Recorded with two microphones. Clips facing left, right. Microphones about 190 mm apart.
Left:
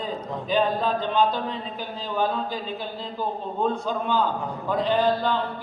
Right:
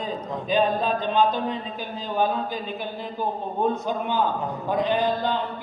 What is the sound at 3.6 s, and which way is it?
A man's voice, 15° right (ahead or behind).